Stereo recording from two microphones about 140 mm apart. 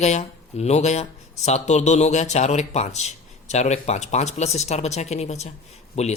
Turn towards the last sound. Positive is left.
turn(degrees=50)  # may be behind; listen again after turning